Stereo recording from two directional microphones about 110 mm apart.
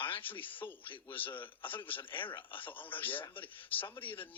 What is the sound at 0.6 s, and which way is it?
Speech, 35° left (ahead or behind).